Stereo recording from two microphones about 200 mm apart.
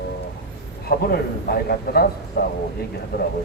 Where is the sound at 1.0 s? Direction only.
50° left (ahead or behind).